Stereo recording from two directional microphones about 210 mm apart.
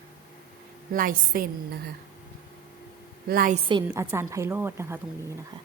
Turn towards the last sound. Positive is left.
turn(degrees=-10)  # may be behind; listen again after turning